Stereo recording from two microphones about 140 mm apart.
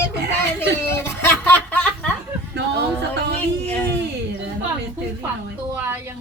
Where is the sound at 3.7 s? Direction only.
15° left (ahead or behind).